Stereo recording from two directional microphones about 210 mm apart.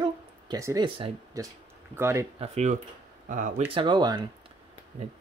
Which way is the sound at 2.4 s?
35° right (ahead or behind).